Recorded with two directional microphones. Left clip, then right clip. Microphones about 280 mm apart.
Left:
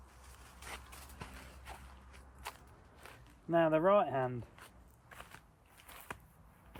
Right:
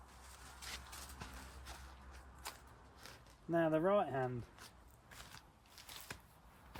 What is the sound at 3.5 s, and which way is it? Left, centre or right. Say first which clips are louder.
Speech: left 5 dB; centre.